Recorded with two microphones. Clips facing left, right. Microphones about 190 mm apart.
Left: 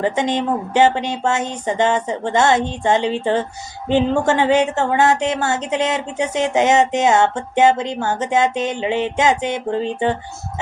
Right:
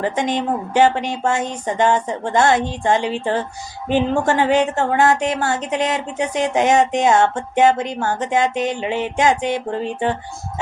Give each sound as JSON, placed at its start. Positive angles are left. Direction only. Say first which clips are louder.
{"t": 0.2, "sound": "speech", "louder": "left 1 dB", "side_deg": 25}